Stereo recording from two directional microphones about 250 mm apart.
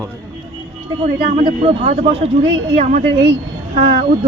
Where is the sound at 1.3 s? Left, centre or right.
Right.